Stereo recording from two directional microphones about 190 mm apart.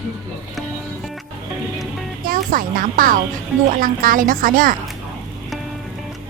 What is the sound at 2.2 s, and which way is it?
A woman's voice, 45° right (ahead or behind).